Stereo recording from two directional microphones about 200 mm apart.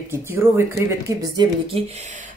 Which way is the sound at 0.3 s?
10° right (ahead or behind).